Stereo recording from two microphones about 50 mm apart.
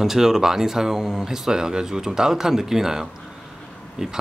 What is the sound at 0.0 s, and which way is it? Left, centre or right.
Speech, centre.